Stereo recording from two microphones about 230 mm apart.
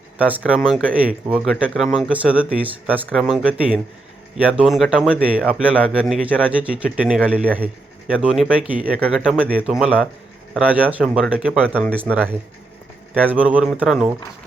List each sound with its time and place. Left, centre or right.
0.2 s speech: centre